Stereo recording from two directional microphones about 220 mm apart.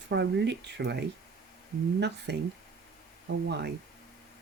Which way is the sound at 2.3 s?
50° right (ahead or behind).